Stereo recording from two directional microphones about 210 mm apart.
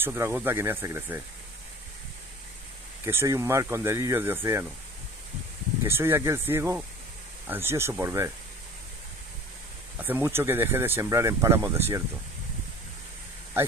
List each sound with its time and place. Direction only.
0.0 s speech: 10° right (ahead or behind)
3.1 s speech: 10° right (ahead or behind)
5.9 s speech: 10° right (ahead or behind)
9.9 s speech: 10° right (ahead or behind)